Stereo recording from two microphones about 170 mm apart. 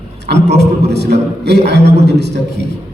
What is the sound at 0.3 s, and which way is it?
A man's voice, 80° right.